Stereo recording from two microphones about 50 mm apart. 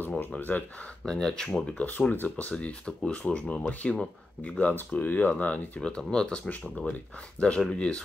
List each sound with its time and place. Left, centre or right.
0.4 s speech: left
1.0 s speech: centre
1.8 s speech: left; by 4.0 s centre
4.5 s speech: left
5.8 s speech: centre